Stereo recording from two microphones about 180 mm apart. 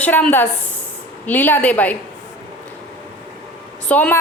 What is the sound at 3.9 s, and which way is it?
Speech, 10° left (ahead or behind).